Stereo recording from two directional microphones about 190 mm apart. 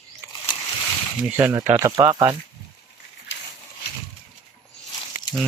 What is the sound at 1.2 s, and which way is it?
Speech, 10° right (ahead or behind).